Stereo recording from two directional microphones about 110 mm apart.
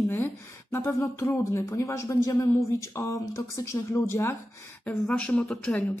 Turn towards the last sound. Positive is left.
turn(degrees=10)  # may be behind; listen again after turning